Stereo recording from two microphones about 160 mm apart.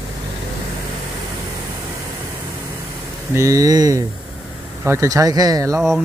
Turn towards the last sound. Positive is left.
turn(degrees=-20)  # may be behind; listen again after turning